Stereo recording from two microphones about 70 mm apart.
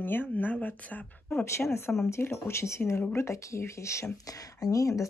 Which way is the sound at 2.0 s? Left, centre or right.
Left.